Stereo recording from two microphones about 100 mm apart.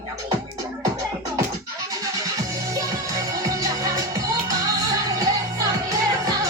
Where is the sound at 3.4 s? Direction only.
35° right (ahead or behind).